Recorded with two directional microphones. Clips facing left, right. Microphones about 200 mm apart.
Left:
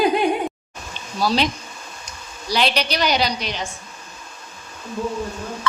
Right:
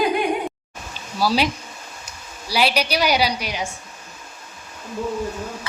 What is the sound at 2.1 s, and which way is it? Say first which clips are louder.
A woman's voice: left 3 dB; 10° right (ahead or behind).